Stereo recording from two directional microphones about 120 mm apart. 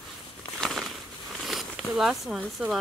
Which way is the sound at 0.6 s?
5° left (ahead or behind).